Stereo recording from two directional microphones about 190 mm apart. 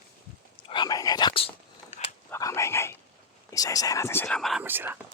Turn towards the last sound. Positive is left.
turn(degrees=-10)  # may be behind; listen again after turning